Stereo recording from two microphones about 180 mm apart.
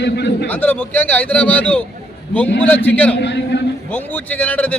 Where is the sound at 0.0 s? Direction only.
70° left (ahead or behind).